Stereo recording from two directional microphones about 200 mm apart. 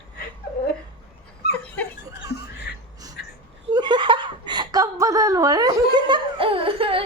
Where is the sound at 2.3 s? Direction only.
55° left (ahead or behind).